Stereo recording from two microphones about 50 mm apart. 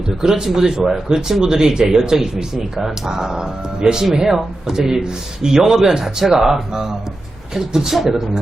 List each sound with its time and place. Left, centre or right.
0.2 s speech: centre